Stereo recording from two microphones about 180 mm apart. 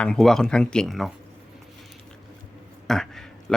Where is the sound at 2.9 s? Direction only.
5° left (ahead or behind).